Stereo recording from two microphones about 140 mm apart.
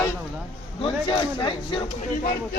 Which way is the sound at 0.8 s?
35° left (ahead or behind).